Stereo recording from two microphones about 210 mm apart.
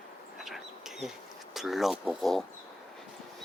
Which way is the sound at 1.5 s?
Centre (ahead or behind).